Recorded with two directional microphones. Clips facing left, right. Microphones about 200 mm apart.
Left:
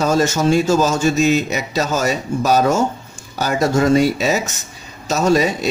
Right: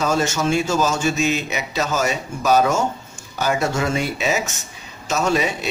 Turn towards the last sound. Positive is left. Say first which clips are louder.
# left 5 dB
turn(degrees=40)  # may be behind; listen again after turning